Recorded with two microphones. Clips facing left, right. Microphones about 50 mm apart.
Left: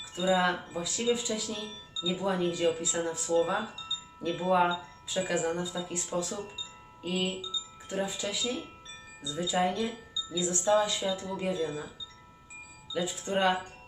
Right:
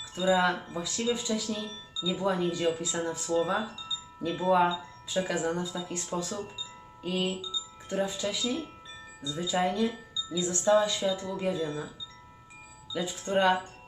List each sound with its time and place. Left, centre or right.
0.2 s chime: centre
7.0 s speech: centre
9.2 s chime: centre
12.9 s chime: centre